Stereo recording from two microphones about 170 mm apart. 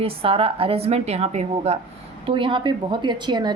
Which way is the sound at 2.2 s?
30° right (ahead or behind).